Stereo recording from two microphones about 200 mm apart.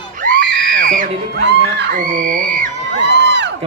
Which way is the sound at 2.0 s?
40° right (ahead or behind).